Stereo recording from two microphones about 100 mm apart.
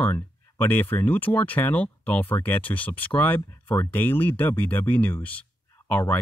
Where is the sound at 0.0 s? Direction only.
20° left (ahead or behind).